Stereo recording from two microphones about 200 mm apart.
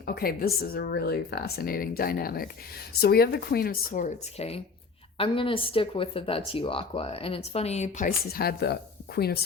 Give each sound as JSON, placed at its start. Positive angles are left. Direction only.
{"t": 0.0, "sound": "speech", "side_deg": 50}